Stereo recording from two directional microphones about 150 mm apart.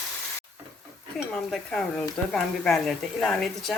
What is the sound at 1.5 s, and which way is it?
Speech, 5° left (ahead or behind).